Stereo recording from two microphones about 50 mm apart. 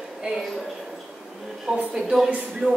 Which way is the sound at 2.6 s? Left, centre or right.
Right.